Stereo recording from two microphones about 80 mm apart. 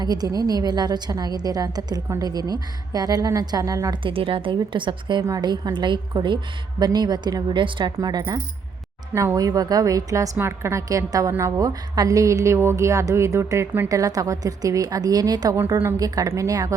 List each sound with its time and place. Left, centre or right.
0.0 s a woman's voice: right
3.9 s a woman's voice: right
5.4 s a woman's voice: right
7.5 s a woman's voice: right
7.9 s a woman's voice: right
9.1 s a woman's voice: right
10.3 s a woman's voice: right
10.8 s a woman's voice: right
13.8 s a woman's voice: right